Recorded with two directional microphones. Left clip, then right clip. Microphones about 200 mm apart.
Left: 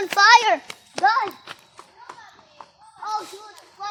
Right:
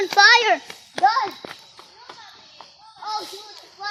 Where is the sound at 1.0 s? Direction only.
10° right (ahead or behind).